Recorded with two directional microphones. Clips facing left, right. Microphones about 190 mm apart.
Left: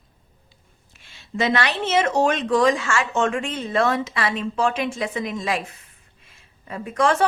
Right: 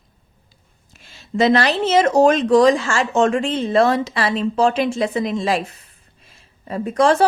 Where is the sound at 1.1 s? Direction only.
35° right (ahead or behind).